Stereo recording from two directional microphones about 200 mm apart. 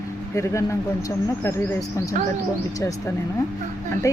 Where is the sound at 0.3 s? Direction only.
15° left (ahead or behind).